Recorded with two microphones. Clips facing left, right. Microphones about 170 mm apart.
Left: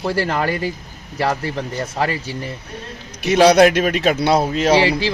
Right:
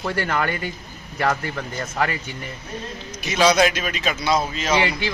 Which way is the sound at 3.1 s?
60° left (ahead or behind).